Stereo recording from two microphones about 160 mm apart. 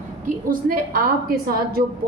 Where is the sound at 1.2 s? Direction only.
75° right (ahead or behind).